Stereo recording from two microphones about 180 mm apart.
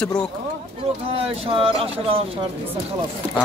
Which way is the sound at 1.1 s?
30° right (ahead or behind).